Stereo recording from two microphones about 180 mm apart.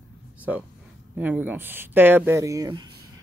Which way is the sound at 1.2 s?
10° right (ahead or behind).